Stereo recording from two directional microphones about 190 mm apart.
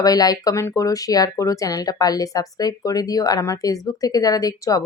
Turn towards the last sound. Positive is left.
turn(degrees=20)  # may be behind; listen again after turning